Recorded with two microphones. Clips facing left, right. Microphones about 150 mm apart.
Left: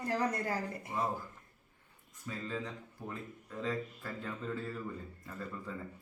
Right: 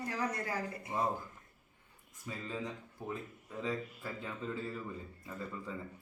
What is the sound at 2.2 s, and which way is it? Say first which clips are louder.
A man's voice: left 1 dB; 10° right (ahead or behind).